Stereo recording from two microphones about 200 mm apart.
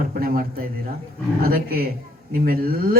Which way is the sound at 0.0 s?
45° right (ahead or behind).